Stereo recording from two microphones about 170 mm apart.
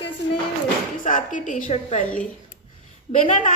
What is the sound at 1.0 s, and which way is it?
Speech, 50° left (ahead or behind).